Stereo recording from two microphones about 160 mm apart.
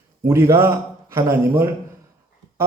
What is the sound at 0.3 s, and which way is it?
A man's voice, 15° right (ahead or behind).